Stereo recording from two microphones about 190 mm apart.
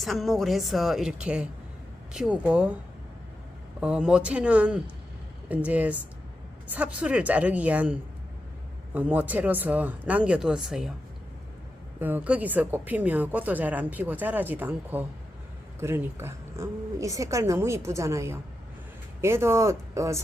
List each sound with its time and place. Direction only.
0.0 s a woman's voice: centre (ahead or behind)
3.8 s a woman's voice: 5° right (ahead or behind)
11.9 s a woman's voice: 10° right (ahead or behind)